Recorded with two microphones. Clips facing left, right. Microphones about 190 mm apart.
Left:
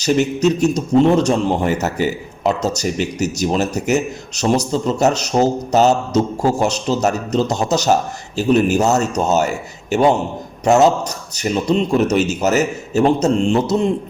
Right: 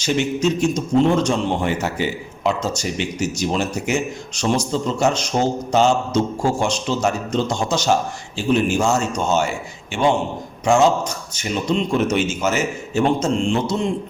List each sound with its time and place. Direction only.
0.0 s speech: 40° left (ahead or behind)
11.3 s speech: 40° left (ahead or behind)